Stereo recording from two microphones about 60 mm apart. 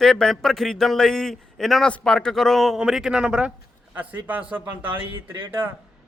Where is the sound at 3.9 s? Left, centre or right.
Right.